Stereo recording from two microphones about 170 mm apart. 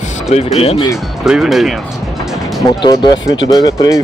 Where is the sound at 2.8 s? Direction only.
25° left (ahead or behind).